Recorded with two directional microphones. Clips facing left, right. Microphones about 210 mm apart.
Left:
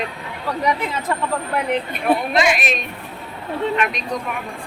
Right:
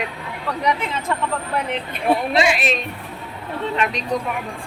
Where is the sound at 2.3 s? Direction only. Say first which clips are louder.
Even; 30° right (ahead or behind).